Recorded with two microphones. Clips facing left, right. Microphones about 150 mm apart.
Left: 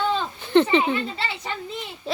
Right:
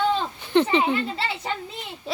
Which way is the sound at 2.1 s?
10° right (ahead or behind).